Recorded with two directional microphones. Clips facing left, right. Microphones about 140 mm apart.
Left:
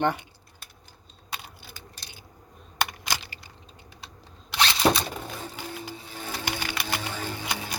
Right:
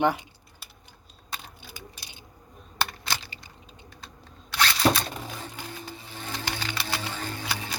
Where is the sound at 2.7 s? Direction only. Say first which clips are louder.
Left 1 dB; 15° left (ahead or behind).